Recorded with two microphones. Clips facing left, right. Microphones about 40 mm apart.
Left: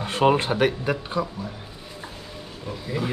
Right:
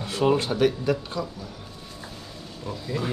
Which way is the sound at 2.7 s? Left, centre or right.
Centre.